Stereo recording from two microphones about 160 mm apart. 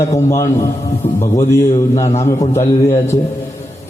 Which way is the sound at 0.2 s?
20° left (ahead or behind).